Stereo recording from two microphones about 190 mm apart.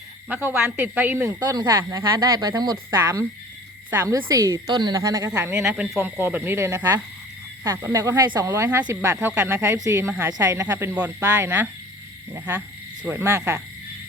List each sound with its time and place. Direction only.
0.4 s a woman's voice: 5° right (ahead or behind)